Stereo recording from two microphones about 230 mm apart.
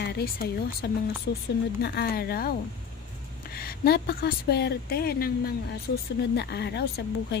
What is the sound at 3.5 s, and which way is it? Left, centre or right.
A woman's voice, left.